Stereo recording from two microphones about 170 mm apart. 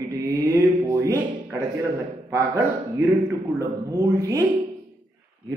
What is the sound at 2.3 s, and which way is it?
A man's voice, 15° right (ahead or behind).